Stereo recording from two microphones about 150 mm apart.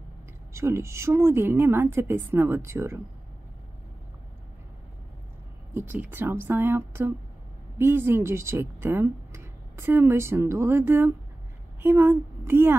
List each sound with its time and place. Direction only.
0.5 s speech: 20° right (ahead or behind)
5.8 s a woman's voice: 15° right (ahead or behind)